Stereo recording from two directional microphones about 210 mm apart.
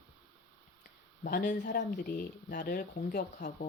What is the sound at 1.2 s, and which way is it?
A woman's voice, 40° left (ahead or behind).